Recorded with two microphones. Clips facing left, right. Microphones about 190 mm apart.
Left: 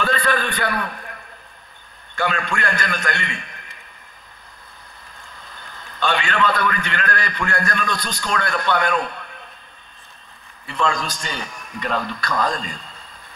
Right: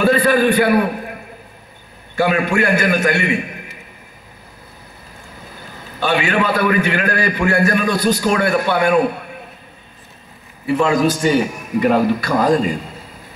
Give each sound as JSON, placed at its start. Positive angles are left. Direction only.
{"t": 0.1, "sound": "a man's voice", "side_deg": -10}
{"t": 5.5, "sound": "a man's voice", "side_deg": -10}
{"t": 10.7, "sound": "a man's voice", "side_deg": -10}
{"t": 11.5, "sound": "speech", "side_deg": -25}
{"t": 11.9, "sound": "a man's voice", "side_deg": -10}